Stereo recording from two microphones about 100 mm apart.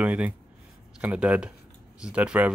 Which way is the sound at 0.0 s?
15° right (ahead or behind).